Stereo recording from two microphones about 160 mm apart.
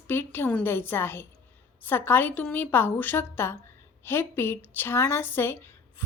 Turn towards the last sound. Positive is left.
turn(degrees=15)  # may be behind; listen again after turning